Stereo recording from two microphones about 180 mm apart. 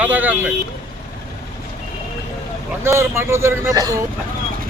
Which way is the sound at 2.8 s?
15° right (ahead or behind).